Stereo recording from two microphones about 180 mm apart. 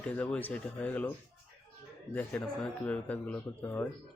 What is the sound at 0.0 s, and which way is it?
Speech, 5° left (ahead or behind).